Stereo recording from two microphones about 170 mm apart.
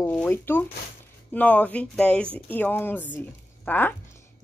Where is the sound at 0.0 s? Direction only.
10° left (ahead or behind).